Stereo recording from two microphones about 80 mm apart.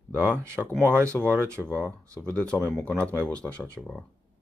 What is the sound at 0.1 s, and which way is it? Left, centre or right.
Speech, right.